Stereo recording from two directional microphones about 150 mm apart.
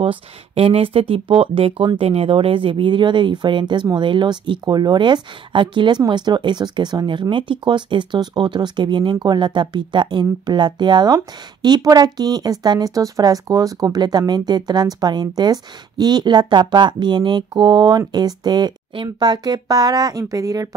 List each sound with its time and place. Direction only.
0.0 s speech: 40° right (ahead or behind); by 20.7 s 20° right (ahead or behind)